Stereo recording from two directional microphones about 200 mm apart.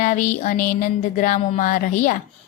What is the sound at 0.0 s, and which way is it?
A woman's voice, 40° left (ahead or behind).